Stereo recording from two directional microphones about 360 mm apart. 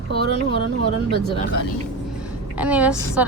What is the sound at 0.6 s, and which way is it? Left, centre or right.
Speech, right.